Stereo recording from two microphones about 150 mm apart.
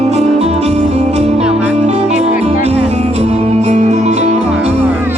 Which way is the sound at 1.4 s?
10° right (ahead or behind).